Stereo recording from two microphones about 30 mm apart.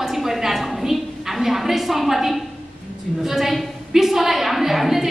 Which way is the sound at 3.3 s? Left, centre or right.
Centre.